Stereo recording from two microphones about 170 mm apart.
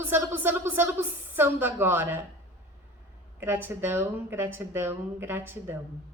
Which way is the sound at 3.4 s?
15° right (ahead or behind).